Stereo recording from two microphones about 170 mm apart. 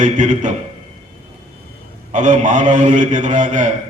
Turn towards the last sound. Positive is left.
turn(degrees=-45)  # may be behind; listen again after turning